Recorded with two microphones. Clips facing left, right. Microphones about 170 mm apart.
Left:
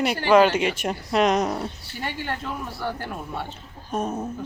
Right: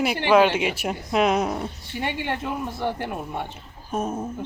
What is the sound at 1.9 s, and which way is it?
Speech, 20° right (ahead or behind).